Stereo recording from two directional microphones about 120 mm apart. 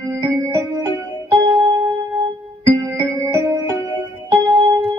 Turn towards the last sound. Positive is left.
turn(degrees=-30)  # may be behind; listen again after turning